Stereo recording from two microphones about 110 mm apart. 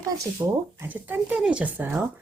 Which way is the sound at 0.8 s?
15° right (ahead or behind).